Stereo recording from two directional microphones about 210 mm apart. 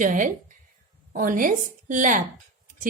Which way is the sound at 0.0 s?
35° right (ahead or behind).